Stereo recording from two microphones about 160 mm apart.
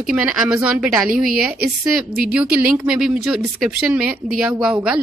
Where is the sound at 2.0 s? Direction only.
5° right (ahead or behind).